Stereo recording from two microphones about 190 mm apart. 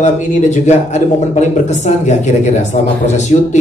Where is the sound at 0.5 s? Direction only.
35° left (ahead or behind).